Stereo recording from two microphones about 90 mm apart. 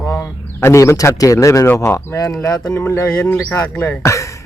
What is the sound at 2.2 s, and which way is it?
Speech, 45° left (ahead or behind).